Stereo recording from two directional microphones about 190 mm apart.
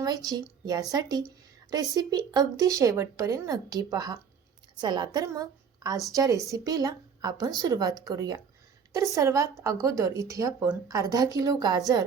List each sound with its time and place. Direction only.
0.0 s a woman's voice: 20° right (ahead or behind)